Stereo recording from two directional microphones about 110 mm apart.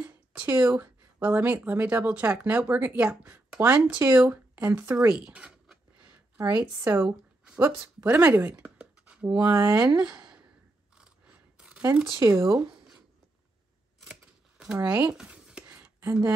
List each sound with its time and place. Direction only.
0.0 s speech: 15° right (ahead or behind)
5.2 s a sound: 10° right (ahead or behind)
6.5 s a woman's voice: 10° right (ahead or behind)
9.3 s speech: 35° right (ahead or behind)
11.5 s a sound: 10° right (ahead or behind)
12.2 s speech: 30° right (ahead or behind)
14.8 s speech: 15° right (ahead or behind)
15.1 s a sound: 5° right (ahead or behind)
16.1 s speech: 25° right (ahead or behind)